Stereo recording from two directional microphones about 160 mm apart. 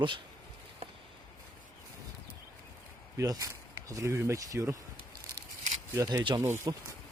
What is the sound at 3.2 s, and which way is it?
Speech, 20° right (ahead or behind).